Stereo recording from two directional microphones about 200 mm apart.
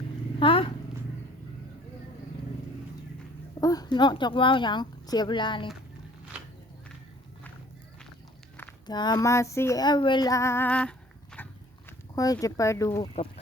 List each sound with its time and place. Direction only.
0.3 s cat: 25° left (ahead or behind)
3.6 s speech: 20° left (ahead or behind)
8.9 s a sound: 20° left (ahead or behind)
11.9 s speech: 15° left (ahead or behind)
13.0 s speech: 30° left (ahead or behind)